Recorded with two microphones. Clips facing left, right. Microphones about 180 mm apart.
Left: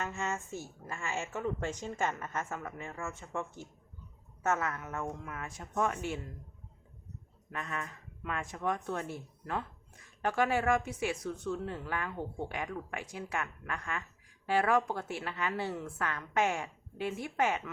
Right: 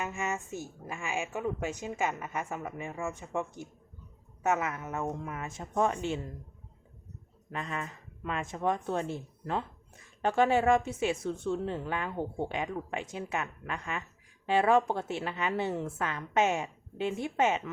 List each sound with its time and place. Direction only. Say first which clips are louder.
0.0 s a woman's voice: right 2 dB; 15° right (ahead or behind)
7.5 s a woman's voice: right 3 dB; 20° right (ahead or behind)